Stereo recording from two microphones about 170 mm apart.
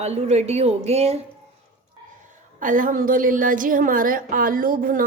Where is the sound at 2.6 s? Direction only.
50° right (ahead or behind).